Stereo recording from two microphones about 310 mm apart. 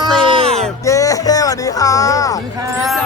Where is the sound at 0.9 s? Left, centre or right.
Centre.